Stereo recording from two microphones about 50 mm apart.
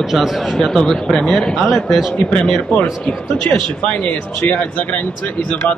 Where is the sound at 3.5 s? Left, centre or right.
Left.